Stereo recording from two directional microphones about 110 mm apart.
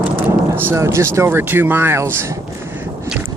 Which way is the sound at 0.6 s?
25° right (ahead or behind).